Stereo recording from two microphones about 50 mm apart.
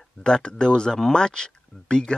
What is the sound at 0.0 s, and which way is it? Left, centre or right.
Speech, centre.